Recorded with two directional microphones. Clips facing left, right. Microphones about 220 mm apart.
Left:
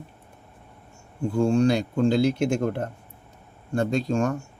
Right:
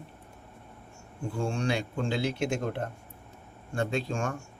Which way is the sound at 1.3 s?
40° left (ahead or behind).